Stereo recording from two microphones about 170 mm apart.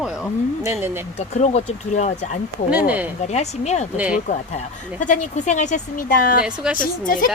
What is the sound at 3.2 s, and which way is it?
Speech, 40° left (ahead or behind).